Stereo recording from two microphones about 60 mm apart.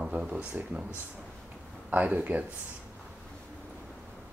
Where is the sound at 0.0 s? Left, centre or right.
Centre.